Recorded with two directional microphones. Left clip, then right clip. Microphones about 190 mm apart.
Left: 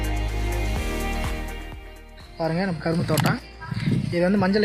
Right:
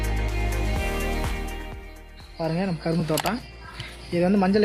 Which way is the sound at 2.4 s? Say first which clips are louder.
Left 2 dB; 5° right (ahead or behind).